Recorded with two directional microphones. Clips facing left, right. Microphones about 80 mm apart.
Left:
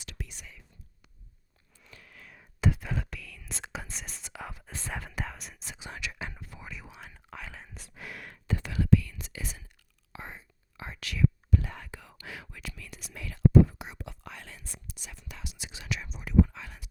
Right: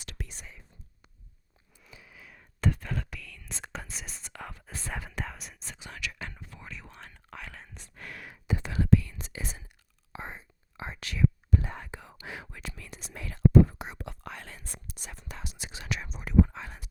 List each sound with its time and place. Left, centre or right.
0.0 s whispering: right
1.8 s whispering: centre
5.8 s whispering: left; by 7.8 s centre
7.9 s a sound: centre
8.4 s whispering: centre
8.7 s whispering: right